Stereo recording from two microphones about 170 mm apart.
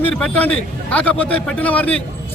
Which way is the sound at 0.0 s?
10° left (ahead or behind).